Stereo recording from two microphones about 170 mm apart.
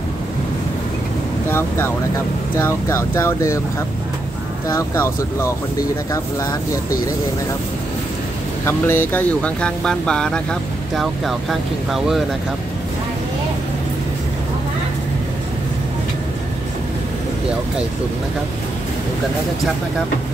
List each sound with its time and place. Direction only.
1.5 s speech: 15° left (ahead or behind)
3.3 s speech: 15° left (ahead or behind)
4.6 s speech: 15° left (ahead or behind)
8.6 s speech: 15° left (ahead or behind)